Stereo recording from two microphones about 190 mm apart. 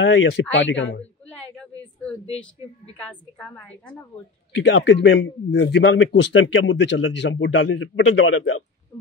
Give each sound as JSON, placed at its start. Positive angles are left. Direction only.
{"t": 0.0, "sound": "a man's voice", "side_deg": 70}
{"t": 3.0, "sound": "a woman's voice", "side_deg": 5}
{"t": 4.6, "sound": "a man's voice", "side_deg": 70}